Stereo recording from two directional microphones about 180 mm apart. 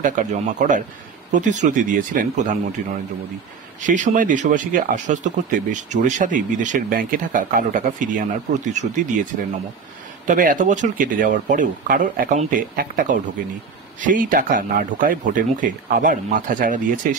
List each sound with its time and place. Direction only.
0.0 s speech: 45° right (ahead or behind)
3.8 s speech: 45° right (ahead or behind)
10.2 s speech: 50° right (ahead or behind)